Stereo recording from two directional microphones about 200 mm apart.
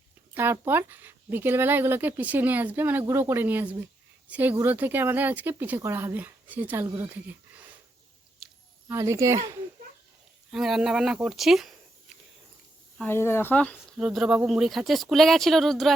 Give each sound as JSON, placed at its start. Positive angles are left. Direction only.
{"t": 0.3, "sound": "speech", "side_deg": -10}
{"t": 8.9, "sound": "speech", "side_deg": -15}
{"t": 10.5, "sound": "speech", "side_deg": 0}
{"t": 13.0, "sound": "speech", "side_deg": 10}